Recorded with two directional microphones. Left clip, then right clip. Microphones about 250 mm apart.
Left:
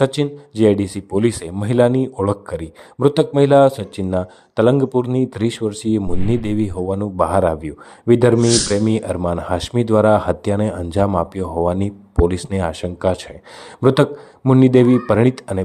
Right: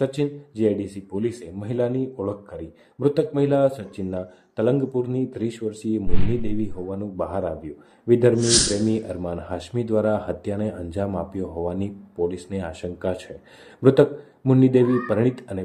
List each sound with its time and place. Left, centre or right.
0.0 s speech: left
8.4 s speech: centre
9.0 s speech: left